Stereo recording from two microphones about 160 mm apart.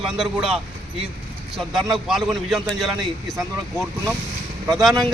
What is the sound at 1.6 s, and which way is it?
A man's voice, centre (ahead or behind).